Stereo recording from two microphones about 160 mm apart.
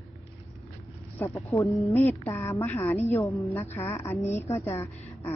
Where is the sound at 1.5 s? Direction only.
20° left (ahead or behind).